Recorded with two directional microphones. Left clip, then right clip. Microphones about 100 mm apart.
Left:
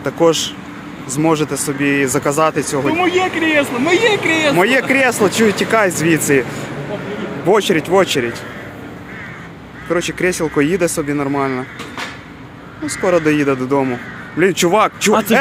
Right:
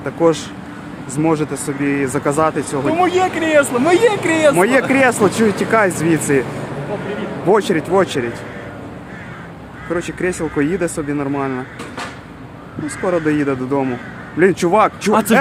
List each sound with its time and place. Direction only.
0.0 s speech: 5° left (ahead or behind)
2.9 s speech: 30° right (ahead or behind)
3.8 s speech: 45° right (ahead or behind)
4.5 s speech: centre (ahead or behind)
9.9 s speech: centre (ahead or behind)
13.1 s speech: centre (ahead or behind)
15.1 s speech: 20° right (ahead or behind)